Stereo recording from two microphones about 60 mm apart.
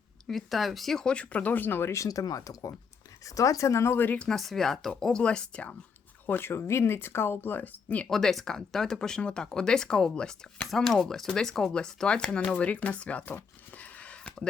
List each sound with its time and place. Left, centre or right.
0.3 s speech: centre; by 1.9 s left
1.9 s speech: left
3.2 s speech: left
3.9 s speech: left
4.4 s speech: centre
6.2 s speech: left
8.1 s speech: centre; by 13.3 s left
13.7 s a sound: left